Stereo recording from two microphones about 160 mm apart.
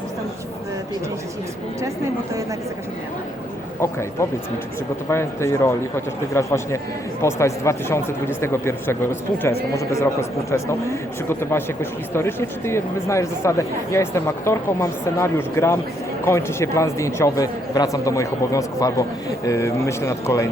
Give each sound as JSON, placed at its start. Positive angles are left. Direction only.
{"t": 5.0, "sound": "a man's voice", "side_deg": 15}